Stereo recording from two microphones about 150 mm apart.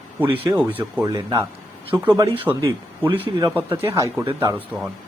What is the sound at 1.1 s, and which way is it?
Speech, 25° right (ahead or behind).